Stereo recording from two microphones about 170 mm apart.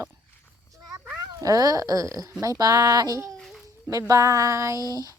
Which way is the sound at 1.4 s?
20° right (ahead or behind).